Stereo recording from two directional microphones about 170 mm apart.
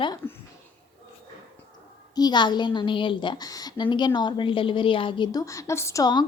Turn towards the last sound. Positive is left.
turn(degrees=25)  # may be behind; listen again after turning